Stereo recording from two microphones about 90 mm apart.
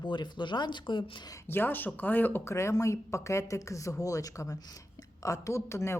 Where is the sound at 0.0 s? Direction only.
60° left (ahead or behind).